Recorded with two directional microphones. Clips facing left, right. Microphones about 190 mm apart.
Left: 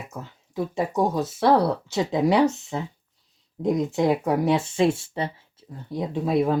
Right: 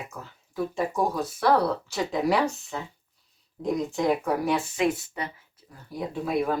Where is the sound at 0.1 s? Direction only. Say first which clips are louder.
Left 5 dB; 20° left (ahead or behind).